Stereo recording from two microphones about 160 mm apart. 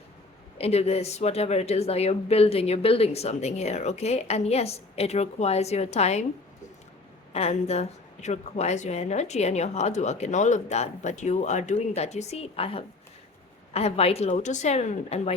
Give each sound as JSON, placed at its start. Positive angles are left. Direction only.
{"t": 0.6, "sound": "a woman's voice", "side_deg": 40}
{"t": 7.3, "sound": "a woman's voice", "side_deg": 40}